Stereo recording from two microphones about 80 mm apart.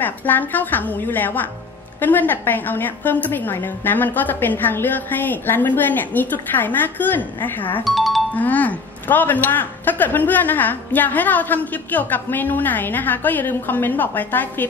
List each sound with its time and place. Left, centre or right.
0.0 s speech: left
7.8 s speech: centre
8.4 s speech: centre